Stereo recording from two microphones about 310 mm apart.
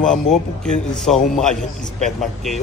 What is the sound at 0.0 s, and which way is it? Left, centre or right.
A man's voice, centre.